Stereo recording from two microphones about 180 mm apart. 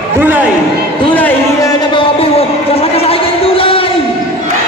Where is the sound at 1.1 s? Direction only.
10° left (ahead or behind).